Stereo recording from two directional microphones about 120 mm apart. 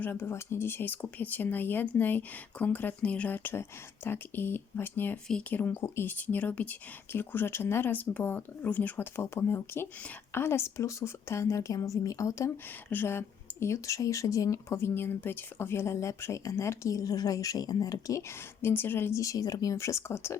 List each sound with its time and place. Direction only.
0.0 s speech: 20° left (ahead or behind)